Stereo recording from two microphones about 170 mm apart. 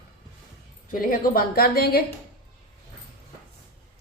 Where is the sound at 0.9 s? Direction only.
55° left (ahead or behind).